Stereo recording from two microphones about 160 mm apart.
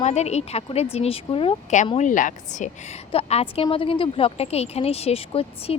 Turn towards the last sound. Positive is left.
turn(degrees=35)  # may be behind; listen again after turning